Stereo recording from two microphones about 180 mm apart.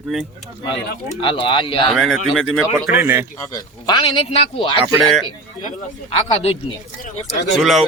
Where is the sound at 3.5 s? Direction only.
25° left (ahead or behind).